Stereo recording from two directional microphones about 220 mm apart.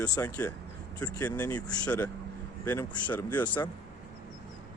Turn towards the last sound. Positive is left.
turn(degrees=5)  # may be behind; listen again after turning